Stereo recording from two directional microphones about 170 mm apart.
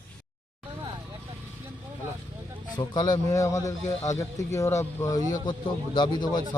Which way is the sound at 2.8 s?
25° left (ahead or behind).